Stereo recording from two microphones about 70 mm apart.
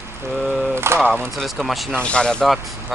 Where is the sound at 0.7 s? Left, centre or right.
Right.